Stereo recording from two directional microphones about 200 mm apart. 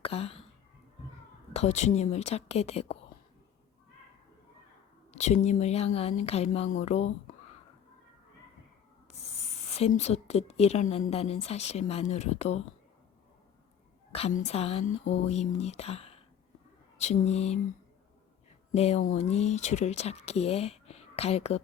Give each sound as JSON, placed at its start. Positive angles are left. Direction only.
{"t": 0.0, "sound": "a sound", "side_deg": 30}
{"t": 1.5, "sound": "a woman's voice", "side_deg": 35}
{"t": 5.1, "sound": "a woman's voice", "side_deg": 35}
{"t": 9.6, "sound": "a woman's voice", "side_deg": 30}
{"t": 14.1, "sound": "a woman's voice", "side_deg": 30}
{"t": 18.7, "sound": "a woman's voice", "side_deg": 30}